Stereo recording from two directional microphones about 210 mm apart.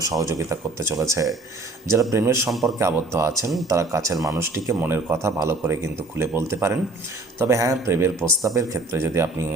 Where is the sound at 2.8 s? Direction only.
15° right (ahead or behind).